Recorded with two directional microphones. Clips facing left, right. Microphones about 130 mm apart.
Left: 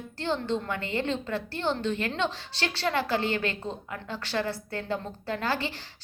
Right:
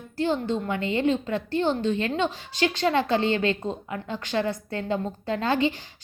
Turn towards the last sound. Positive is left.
turn(degrees=-20)  # may be behind; listen again after turning